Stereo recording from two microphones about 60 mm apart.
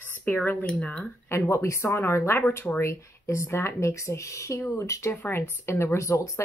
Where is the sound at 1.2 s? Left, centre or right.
Left.